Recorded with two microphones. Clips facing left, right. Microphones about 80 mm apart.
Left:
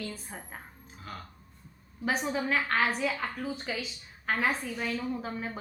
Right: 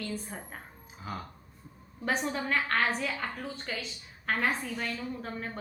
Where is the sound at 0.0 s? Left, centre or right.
Centre.